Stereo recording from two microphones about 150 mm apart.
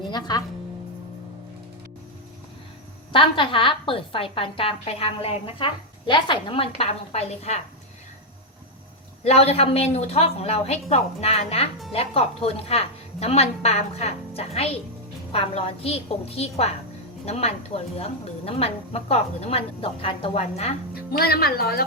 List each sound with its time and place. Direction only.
0.0 s speech: 30° left (ahead or behind)
3.1 s a woman's voice: 35° left (ahead or behind)
9.2 s a woman's voice: 45° left (ahead or behind)
20.9 s speech: 90° left